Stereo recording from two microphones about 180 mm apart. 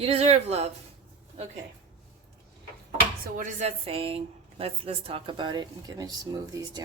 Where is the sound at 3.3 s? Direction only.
40° right (ahead or behind); by 6.8 s 20° right (ahead or behind).